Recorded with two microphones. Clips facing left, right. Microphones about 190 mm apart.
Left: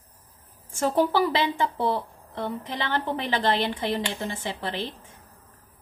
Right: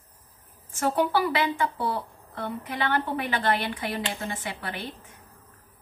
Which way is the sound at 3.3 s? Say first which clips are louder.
Left 2 dB; 30° left (ahead or behind).